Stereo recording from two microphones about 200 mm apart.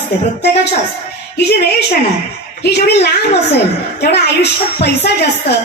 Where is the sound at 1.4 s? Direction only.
55° left (ahead or behind).